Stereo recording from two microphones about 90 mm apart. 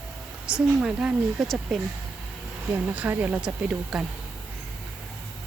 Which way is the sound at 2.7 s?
20° right (ahead or behind).